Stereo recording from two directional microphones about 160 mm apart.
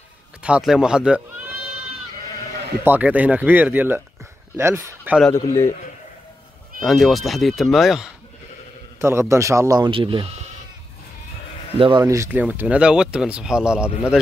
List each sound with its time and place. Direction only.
0.4 s speech: 5° right (ahead or behind)
2.8 s speech: 10° right (ahead or behind)
5.3 s a man's voice: 15° left (ahead or behind)
6.8 s speech: centre (ahead or behind)
9.0 s speech: 15° right (ahead or behind)
9.8 s speech: 35° right (ahead or behind)
11.8 s speech: 25° right (ahead or behind); by 13.9 s 5° right (ahead or behind)